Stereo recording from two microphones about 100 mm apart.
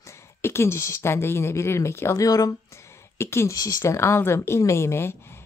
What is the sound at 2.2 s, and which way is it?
Speech, 35° left (ahead or behind).